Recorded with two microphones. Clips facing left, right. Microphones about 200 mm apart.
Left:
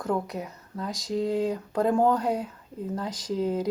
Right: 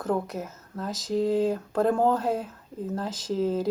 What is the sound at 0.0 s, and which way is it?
Speech, centre (ahead or behind).